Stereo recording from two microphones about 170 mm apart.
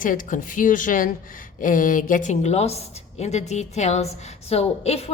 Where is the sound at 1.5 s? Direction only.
50° left (ahead or behind).